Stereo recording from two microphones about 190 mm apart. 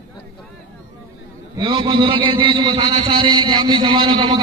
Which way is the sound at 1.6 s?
25° right (ahead or behind).